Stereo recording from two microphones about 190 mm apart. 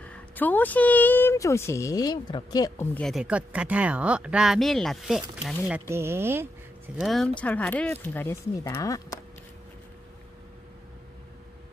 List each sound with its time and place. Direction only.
0.0 s speech: 10° left (ahead or behind)
2.8 s speech: 10° left (ahead or behind)
5.7 s speech: 15° right (ahead or behind)
7.0 s speech: centre (ahead or behind); by 9.2 s 15° left (ahead or behind)